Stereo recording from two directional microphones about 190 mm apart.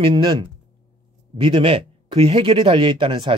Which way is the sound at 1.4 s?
25° right (ahead or behind).